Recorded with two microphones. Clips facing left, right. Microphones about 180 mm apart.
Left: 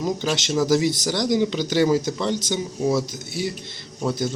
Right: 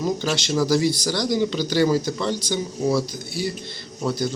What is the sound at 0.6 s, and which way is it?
Speech, 20° left (ahead or behind).